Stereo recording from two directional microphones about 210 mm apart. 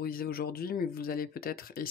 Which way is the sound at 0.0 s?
45° left (ahead or behind).